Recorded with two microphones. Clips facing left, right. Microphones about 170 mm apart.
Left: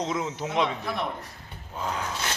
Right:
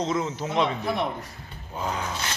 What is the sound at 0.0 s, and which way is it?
Speech, 15° left (ahead or behind).